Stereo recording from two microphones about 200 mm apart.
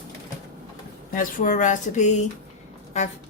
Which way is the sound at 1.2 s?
40° left (ahead or behind).